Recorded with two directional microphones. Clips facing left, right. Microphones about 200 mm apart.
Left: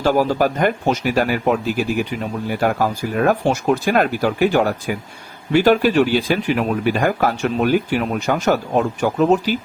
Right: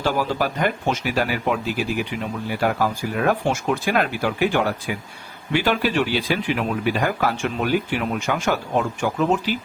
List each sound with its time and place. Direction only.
0.0 s speech: 45° left (ahead or behind)